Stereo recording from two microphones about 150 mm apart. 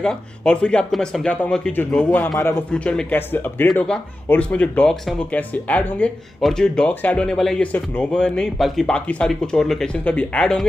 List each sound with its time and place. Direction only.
0.0 s speech: 5° left (ahead or behind)
2.0 s a man's voice: 15° left (ahead or behind)
2.7 s speech: 5° left (ahead or behind)